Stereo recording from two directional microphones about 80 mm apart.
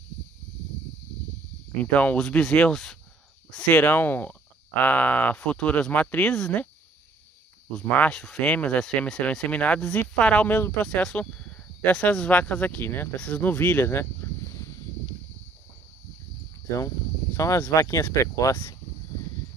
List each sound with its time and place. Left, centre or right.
1.8 s speech: centre
2.1 s speech: centre
3.5 s speech: centre
8.0 s speech: centre
10.9 s speech: centre; by 13.1 s left
13.1 s speech: centre
16.7 s speech: left